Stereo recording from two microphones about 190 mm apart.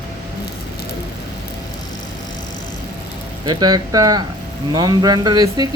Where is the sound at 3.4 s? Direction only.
20° right (ahead or behind).